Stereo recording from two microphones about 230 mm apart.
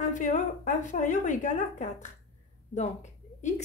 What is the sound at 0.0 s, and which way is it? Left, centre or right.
A woman's voice, left.